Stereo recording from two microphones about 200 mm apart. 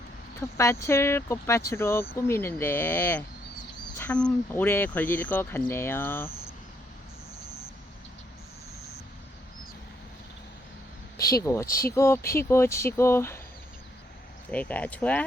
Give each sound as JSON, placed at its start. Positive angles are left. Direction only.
{"t": 0.3, "sound": "speech", "side_deg": 15}
{"t": 11.2, "sound": "speech", "side_deg": 15}
{"t": 14.5, "sound": "speech", "side_deg": 10}